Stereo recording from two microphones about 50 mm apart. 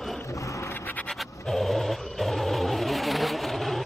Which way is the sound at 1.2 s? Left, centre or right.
Centre.